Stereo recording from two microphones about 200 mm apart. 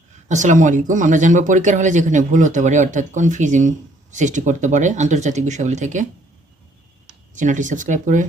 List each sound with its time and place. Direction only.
0.3 s speech: 40° right (ahead or behind)
7.3 s speech: 40° right (ahead or behind)